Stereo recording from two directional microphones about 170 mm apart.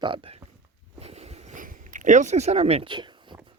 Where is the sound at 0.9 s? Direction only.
40° right (ahead or behind).